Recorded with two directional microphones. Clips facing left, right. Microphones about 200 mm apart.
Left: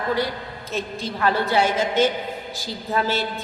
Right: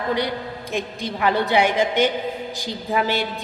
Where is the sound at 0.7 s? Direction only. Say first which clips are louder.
Even; 15° right (ahead or behind).